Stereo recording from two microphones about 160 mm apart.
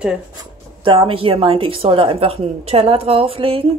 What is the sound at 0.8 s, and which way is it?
A woman's voice, 35° right (ahead or behind).